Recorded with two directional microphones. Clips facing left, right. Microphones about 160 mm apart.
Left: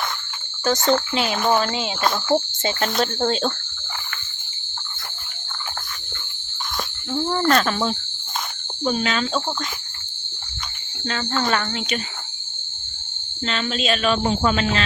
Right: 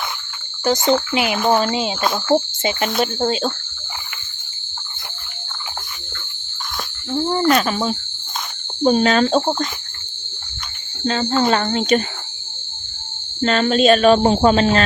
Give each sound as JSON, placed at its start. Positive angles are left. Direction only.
{"t": 0.6, "sound": "cricket", "side_deg": -15}
{"t": 1.4, "sound": "speech", "side_deg": 0}
{"t": 1.6, "sound": "speech", "side_deg": -25}
{"t": 2.0, "sound": "speech", "side_deg": -5}
{"t": 2.3, "sound": "cricket", "side_deg": -15}
{"t": 7.3, "sound": "cricket", "side_deg": -15}
{"t": 8.8, "sound": "speech", "side_deg": -40}
{"t": 11.0, "sound": "speech", "side_deg": -30}
{"t": 13.4, "sound": "speech", "side_deg": -45}